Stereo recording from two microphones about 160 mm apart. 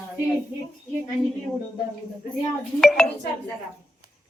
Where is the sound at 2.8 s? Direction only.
5° left (ahead or behind).